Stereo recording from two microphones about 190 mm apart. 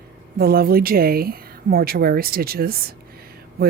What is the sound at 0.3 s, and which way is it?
A woman's voice, 50° right (ahead or behind).